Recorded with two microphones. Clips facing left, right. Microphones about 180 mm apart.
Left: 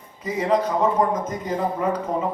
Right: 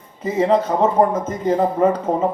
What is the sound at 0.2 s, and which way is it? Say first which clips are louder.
A man's voice: right 4 dB; 25° right (ahead or behind).